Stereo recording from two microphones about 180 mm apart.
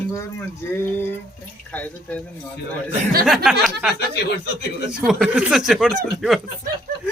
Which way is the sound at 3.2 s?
Centre (ahead or behind).